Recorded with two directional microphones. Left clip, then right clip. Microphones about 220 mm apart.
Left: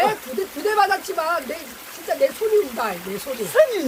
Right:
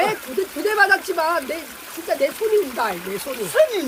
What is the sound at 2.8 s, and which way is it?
Speech, 20° right (ahead or behind).